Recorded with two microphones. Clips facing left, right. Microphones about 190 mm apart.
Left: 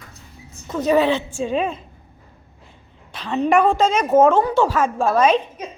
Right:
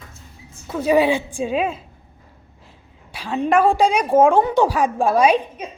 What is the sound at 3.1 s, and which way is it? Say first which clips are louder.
A woman's voice: left 1 dB; 10° right (ahead or behind).